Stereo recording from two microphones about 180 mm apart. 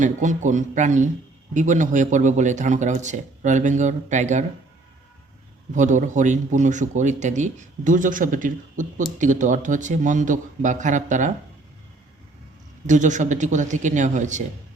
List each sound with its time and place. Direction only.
0.0 s a man's voice: 45° right (ahead or behind)
5.7 s a man's voice: 45° right (ahead or behind)
12.9 s a man's voice: 45° right (ahead or behind)